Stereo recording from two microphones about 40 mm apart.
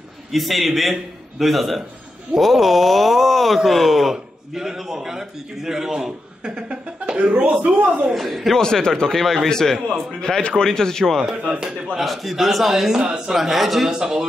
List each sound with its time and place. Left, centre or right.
0.3 s a man's voice: centre
6.4 s speech: right
7.6 s speech: right
8.1 s speech: centre
8.5 s speech: centre
9.0 s speech: centre
11.2 s speech: right
12.0 s speech: centre
13.8 s a man's voice: centre